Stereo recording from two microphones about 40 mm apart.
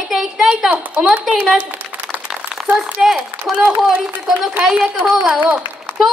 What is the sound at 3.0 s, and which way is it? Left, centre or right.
Speech, centre.